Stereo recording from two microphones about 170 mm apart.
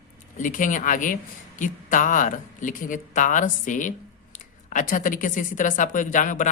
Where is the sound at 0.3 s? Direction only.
50° left (ahead or behind).